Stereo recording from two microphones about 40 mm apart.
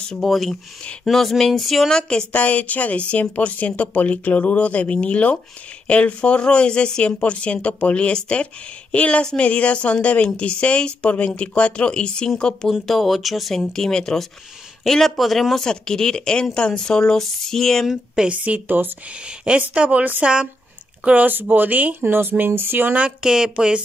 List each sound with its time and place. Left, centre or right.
0.2 s speech: centre
1.9 s speech: centre
2.3 s speech: left
12.8 s speech: centre
15.6 s speech: centre
18.3 s speech: right
18.7 s speech: right
19.2 s a woman's voice: right
21.0 s speech: right
21.3 s speech: right
22.0 s speech: right
23.2 s speech: centre